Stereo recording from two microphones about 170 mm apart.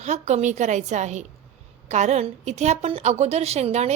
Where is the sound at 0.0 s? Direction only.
40° right (ahead or behind).